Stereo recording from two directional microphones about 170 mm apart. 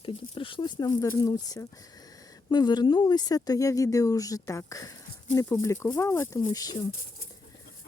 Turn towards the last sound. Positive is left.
turn(degrees=20)  # may be behind; listen again after turning